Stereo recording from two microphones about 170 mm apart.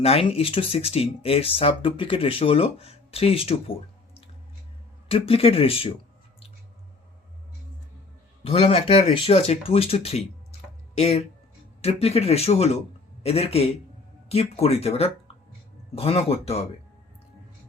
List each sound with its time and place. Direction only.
0.0 s speech: 35° left (ahead or behind)
5.0 s speech: 35° left (ahead or behind)
8.4 s speech: 35° left (ahead or behind)